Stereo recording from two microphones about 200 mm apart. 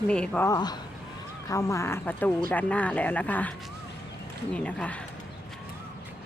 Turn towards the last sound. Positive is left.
turn(degrees=5)  # may be behind; listen again after turning